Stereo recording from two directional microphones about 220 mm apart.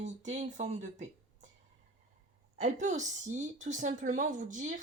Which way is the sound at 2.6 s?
35° right (ahead or behind).